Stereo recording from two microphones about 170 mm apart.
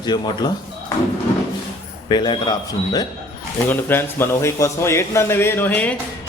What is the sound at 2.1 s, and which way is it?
Speech, 25° left (ahead or behind).